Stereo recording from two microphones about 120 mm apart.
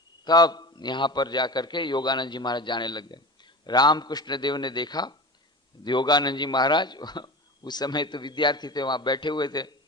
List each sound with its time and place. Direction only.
0.3 s a man's voice: 35° left (ahead or behind)